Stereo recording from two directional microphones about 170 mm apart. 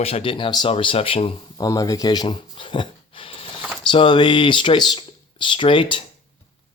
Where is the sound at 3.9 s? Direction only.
30° left (ahead or behind).